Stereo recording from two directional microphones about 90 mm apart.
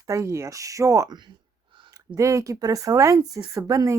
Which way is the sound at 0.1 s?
35° right (ahead or behind).